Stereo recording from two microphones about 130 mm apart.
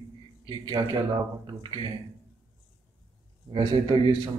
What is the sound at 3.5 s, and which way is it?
Speech, 40° right (ahead or behind).